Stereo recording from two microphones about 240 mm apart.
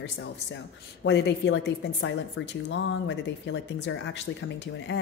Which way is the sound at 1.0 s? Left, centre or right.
Left.